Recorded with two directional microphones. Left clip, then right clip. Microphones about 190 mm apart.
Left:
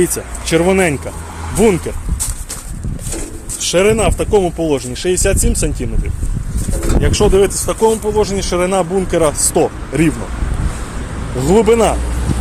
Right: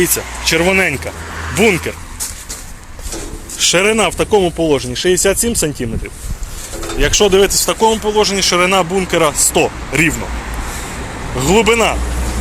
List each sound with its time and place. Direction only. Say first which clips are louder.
0.0 s speech: right 2 dB; 20° left (ahead or behind)
3.6 s speech: right 1 dB; 5° right (ahead or behind)
7.0 s speech: right 2 dB; 10° right (ahead or behind)
8.1 s speech: right 3 dB; 15° left (ahead or behind)
11.4 s speech: left 1 dB; 20° left (ahead or behind)